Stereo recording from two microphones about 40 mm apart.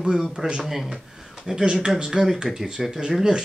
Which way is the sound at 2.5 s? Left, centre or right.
Centre.